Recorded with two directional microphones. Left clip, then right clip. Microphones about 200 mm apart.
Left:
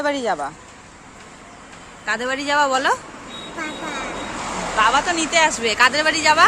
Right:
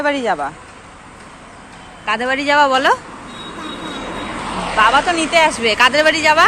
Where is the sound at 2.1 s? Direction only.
Centre (ahead or behind).